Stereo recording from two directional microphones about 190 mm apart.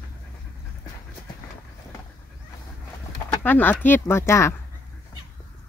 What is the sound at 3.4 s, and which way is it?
Speech, 10° left (ahead or behind).